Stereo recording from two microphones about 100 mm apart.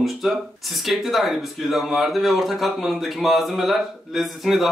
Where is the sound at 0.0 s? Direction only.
Centre (ahead or behind).